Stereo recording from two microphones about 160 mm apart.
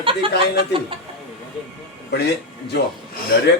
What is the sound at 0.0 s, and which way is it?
Speech, 35° right (ahead or behind).